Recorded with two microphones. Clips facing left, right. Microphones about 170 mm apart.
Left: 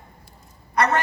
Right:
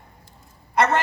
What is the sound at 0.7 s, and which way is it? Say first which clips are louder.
Speech: right 1 dB; 25° right (ahead or behind).